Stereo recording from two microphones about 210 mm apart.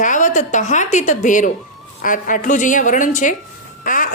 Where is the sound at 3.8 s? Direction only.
40° left (ahead or behind).